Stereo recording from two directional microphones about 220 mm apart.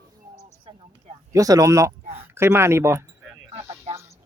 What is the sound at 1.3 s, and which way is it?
Speech, 15° right (ahead or behind).